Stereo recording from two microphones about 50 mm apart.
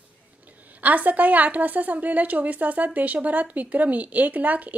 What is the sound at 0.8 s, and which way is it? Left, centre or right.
Speech, right.